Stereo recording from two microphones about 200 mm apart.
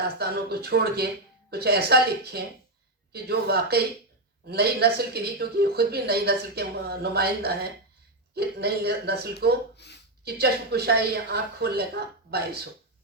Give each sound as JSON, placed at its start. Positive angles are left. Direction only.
{"t": 0.0, "sound": "speech", "side_deg": -55}
{"t": 9.7, "sound": "a sound", "side_deg": 55}
{"t": 10.2, "sound": "speech", "side_deg": -55}